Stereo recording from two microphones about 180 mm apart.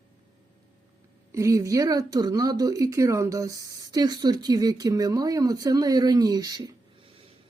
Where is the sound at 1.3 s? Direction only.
15° right (ahead or behind).